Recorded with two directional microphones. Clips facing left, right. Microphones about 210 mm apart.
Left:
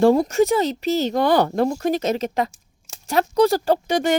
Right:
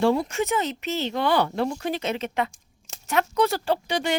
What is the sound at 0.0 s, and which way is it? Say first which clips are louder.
Speech: left 7 dB; 40° left (ahead or behind).